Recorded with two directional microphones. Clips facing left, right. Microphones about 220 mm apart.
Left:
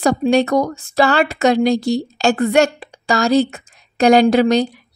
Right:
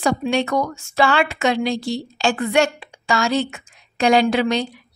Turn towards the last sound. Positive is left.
turn(degrees=40)  # may be behind; listen again after turning